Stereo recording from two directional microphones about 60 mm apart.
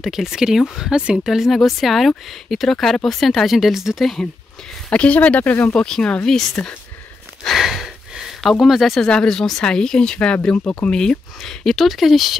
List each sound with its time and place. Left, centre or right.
0.0 s speech: centre
4.8 s speech: centre
5.8 s speech: centre
7.4 s a sound: centre
8.4 s speech: centre
9.0 s speech: centre